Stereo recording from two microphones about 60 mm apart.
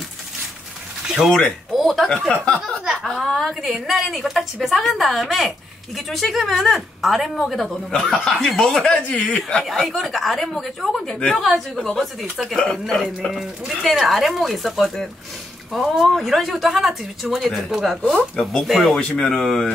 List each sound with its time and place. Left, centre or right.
1.0 s a sound: centre
1.7 s speech: centre
9.7 s speech: centre
13.3 s speech: centre